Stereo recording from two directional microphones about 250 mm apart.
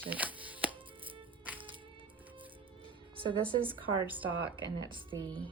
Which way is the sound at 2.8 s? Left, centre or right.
Centre.